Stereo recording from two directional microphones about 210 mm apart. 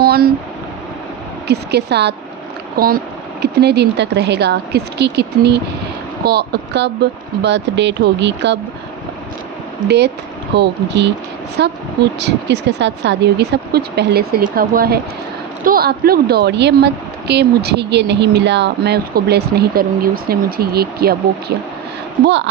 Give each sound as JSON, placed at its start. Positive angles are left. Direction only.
{"t": 0.0, "sound": "a sound", "side_deg": -45}
{"t": 1.5, "sound": "a woman's voice", "side_deg": -50}
{"t": 10.5, "sound": "a woman's voice", "side_deg": -55}